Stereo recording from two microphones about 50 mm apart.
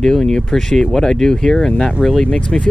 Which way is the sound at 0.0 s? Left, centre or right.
Centre.